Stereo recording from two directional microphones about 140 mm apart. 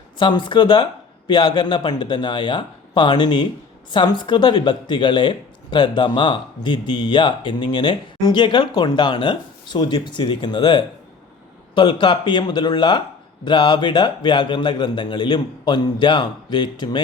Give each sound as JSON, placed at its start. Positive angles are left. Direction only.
{"t": 0.2, "sound": "speech", "side_deg": 35}